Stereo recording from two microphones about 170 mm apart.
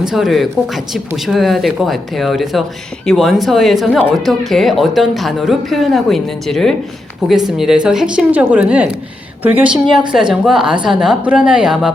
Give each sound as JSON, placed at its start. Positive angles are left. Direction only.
{"t": 0.0, "sound": "speech", "side_deg": 0}